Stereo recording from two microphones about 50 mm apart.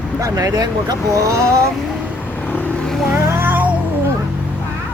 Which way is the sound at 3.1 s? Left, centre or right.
Right.